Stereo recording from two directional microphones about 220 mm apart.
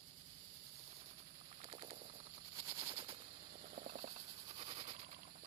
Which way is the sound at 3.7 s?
35° right (ahead or behind).